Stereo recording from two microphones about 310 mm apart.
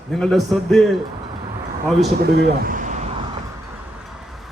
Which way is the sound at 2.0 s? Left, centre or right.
Right.